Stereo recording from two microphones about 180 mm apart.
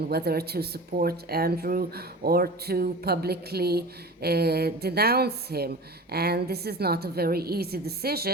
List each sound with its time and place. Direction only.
0.1 s speech: 60° right (ahead or behind)